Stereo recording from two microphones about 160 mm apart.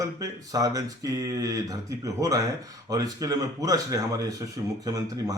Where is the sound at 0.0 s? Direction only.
20° right (ahead or behind).